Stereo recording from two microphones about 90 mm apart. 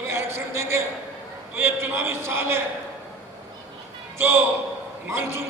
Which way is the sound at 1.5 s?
25° right (ahead or behind).